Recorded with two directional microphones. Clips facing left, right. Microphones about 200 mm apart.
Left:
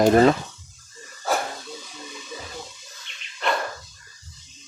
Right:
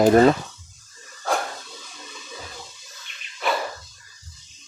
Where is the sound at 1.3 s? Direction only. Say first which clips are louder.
Even; 5° left (ahead or behind).